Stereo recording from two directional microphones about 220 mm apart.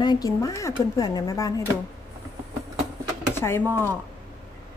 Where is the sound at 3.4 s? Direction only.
10° left (ahead or behind).